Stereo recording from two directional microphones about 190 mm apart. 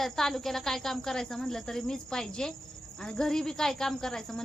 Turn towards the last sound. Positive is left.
turn(degrees=0)  # may be behind; listen again after turning